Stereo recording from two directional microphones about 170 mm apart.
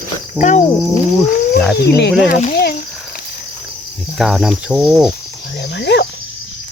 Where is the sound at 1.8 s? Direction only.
75° left (ahead or behind).